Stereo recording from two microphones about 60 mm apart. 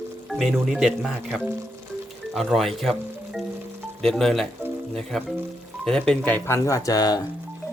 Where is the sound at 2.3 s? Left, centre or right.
Centre.